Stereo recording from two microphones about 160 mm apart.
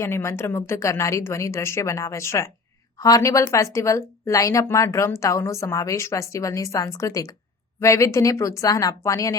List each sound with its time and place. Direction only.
0.0 s a woman's voice: 15° left (ahead or behind)